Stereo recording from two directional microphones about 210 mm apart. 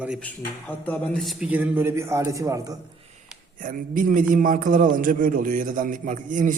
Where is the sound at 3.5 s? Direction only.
40° right (ahead or behind).